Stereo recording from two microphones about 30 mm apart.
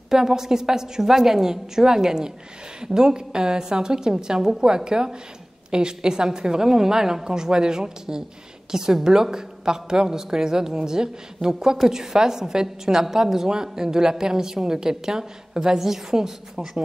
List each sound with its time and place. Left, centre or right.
0.1 s a woman's voice: centre